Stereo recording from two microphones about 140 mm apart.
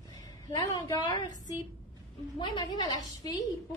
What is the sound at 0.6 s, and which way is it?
A woman's voice, 30° left (ahead or behind).